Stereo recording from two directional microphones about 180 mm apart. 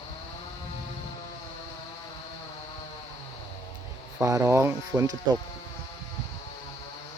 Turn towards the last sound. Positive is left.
turn(degrees=-20)  # may be behind; listen again after turning